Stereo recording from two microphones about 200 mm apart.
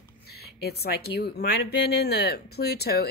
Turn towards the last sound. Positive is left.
turn(degrees=50)  # may be behind; listen again after turning